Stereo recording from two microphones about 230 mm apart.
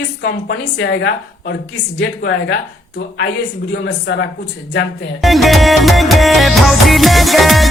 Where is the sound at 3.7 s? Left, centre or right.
Left.